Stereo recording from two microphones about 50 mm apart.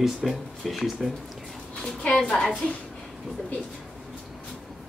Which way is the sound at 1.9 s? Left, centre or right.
Centre.